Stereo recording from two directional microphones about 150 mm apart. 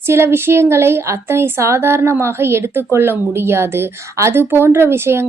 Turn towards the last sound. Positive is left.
turn(degrees=-15)  # may be behind; listen again after turning